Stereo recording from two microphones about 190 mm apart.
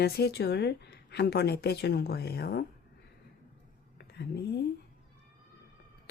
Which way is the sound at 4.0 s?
60° left (ahead or behind).